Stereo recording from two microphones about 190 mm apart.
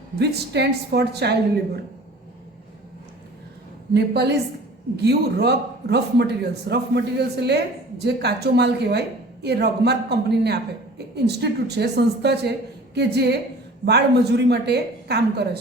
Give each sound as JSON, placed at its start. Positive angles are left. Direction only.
{"t": 0.2, "sound": "a man's voice", "side_deg": -60}
{"t": 3.9, "sound": "a man's voice", "side_deg": -60}